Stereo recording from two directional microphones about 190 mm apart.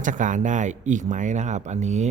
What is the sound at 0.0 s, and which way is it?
A man's voice, 40° right (ahead or behind).